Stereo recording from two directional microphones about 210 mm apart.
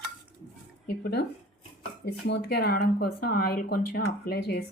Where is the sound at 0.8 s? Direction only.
50° left (ahead or behind).